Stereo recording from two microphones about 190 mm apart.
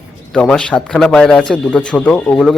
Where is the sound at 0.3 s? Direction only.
5° left (ahead or behind).